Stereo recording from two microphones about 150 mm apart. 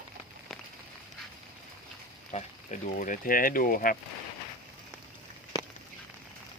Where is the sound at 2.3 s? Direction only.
55° left (ahead or behind).